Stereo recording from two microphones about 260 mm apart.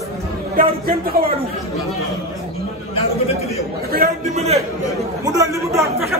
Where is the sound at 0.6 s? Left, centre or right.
Right.